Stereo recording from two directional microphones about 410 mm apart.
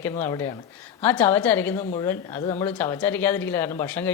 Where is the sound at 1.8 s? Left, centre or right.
Centre.